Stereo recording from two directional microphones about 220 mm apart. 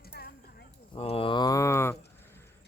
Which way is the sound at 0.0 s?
45° left (ahead or behind).